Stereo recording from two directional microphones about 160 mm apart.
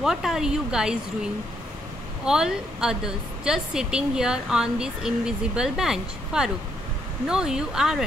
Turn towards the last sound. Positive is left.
turn(degrees=-5)  # may be behind; listen again after turning